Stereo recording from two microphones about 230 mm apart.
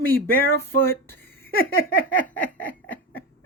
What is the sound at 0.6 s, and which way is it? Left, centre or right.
Speech, centre.